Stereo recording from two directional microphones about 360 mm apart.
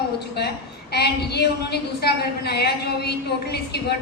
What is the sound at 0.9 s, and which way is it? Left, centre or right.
A woman's voice, left.